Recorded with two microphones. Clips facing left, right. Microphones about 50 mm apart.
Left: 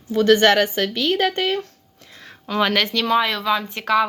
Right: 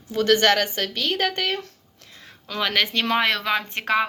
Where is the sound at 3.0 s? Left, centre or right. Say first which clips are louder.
Left 3 dB; right.